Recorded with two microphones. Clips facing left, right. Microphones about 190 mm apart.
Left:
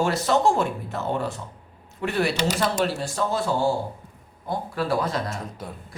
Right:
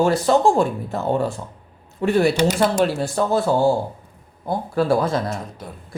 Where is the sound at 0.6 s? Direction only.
35° right (ahead or behind).